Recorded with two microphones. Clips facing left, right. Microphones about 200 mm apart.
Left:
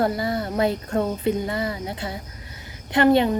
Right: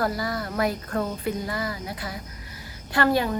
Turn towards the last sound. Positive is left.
turn(degrees=25)  # may be behind; listen again after turning